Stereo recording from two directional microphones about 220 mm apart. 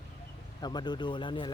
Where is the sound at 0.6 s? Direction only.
20° left (ahead or behind).